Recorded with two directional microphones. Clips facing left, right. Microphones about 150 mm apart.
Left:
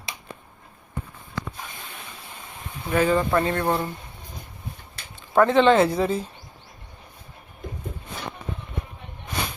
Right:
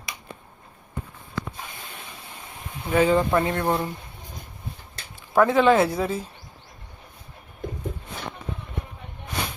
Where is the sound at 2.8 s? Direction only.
15° right (ahead or behind).